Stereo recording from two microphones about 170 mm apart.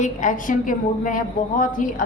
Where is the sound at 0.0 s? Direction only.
50° left (ahead or behind).